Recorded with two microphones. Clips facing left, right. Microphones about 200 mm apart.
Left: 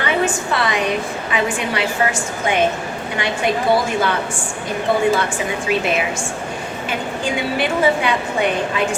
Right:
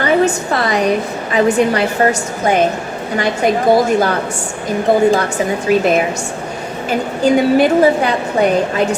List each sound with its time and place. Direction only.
0.0 s a woman's voice: 40° right (ahead or behind)
7.3 s a woman's voice: 40° right (ahead or behind)